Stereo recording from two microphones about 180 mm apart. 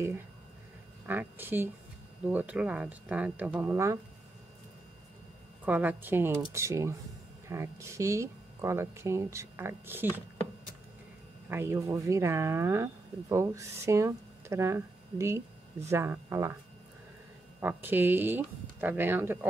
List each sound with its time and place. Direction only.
1.0 s speech: 10° right (ahead or behind)
5.7 s speech: 10° right (ahead or behind)
11.4 s speech: 15° right (ahead or behind)
17.6 s speech: 10° right (ahead or behind)